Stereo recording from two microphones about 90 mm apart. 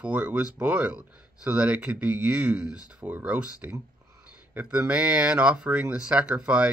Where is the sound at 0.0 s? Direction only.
15° right (ahead or behind).